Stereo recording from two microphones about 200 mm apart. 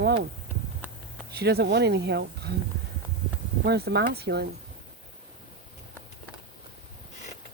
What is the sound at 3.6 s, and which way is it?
Speech, 55° right (ahead or behind).